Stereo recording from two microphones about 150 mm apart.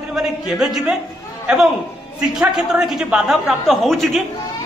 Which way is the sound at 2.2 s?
5° right (ahead or behind).